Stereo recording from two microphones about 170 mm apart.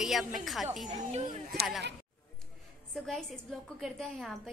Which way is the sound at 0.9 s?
45° right (ahead or behind).